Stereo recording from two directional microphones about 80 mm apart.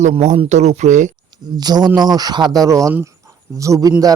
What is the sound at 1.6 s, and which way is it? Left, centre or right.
A man's voice, right.